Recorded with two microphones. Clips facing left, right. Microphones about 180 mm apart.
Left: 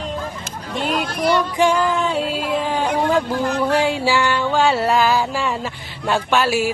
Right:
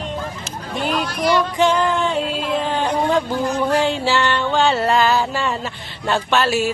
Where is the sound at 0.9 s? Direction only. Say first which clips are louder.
Even; 50° left (ahead or behind).